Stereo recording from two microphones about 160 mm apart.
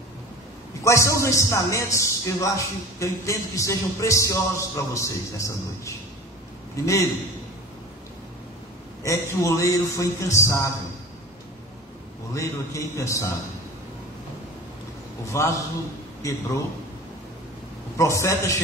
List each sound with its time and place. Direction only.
0.8 s a man's voice: 20° left (ahead or behind)
9.0 s a man's voice: 20° left (ahead or behind)
12.4 s a man's voice: 20° left (ahead or behind)
15.3 s a man's voice: 20° left (ahead or behind)
17.9 s a man's voice: 20° left (ahead or behind)